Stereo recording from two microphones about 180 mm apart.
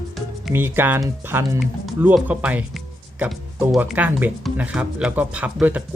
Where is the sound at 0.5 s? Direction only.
10° right (ahead or behind).